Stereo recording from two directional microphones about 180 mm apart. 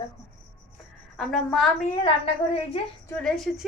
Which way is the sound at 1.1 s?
Centre (ahead or behind).